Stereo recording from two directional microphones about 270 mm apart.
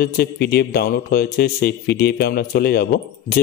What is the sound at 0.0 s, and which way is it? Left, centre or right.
Speech, left.